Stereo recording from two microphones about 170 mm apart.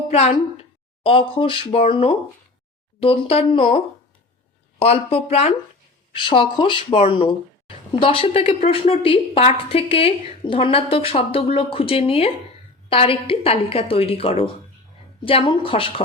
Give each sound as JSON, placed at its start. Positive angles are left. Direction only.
{"t": 0.1, "sound": "a woman's voice", "side_deg": 40}